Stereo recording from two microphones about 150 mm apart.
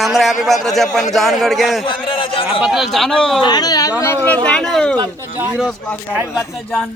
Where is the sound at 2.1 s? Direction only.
35° left (ahead or behind).